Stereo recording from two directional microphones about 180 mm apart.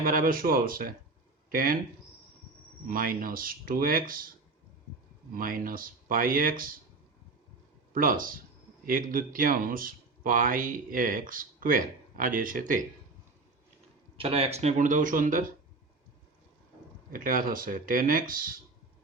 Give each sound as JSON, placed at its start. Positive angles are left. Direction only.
{"t": 0.0, "sound": "speech", "side_deg": -50}
{"t": 2.8, "sound": "speech", "side_deg": -50}
{"t": 5.3, "sound": "speech", "side_deg": -50}
{"t": 7.9, "sound": "speech", "side_deg": -50}
{"t": 14.2, "sound": "speech", "side_deg": -30}
{"t": 17.1, "sound": "speech", "side_deg": -50}